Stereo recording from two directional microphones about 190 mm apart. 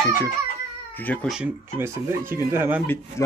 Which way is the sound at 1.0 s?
10° left (ahead or behind).